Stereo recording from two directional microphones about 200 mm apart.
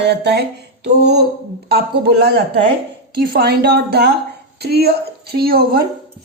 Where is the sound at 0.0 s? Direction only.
55° right (ahead or behind).